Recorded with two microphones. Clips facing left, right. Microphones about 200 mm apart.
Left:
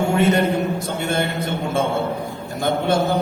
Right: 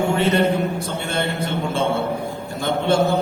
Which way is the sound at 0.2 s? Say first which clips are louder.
Left 3 dB; 30° right (ahead or behind).